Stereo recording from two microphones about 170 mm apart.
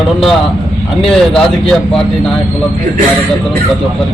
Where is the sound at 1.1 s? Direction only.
5° left (ahead or behind).